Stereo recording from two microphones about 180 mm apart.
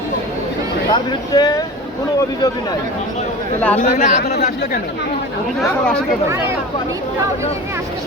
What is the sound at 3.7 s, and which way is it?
Speech, 40° left (ahead or behind).